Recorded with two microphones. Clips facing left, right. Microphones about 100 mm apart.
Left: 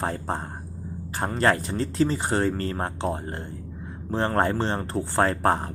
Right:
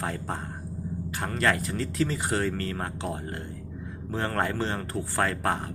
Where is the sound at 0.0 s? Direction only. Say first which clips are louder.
Left 4 dB; 35° left (ahead or behind).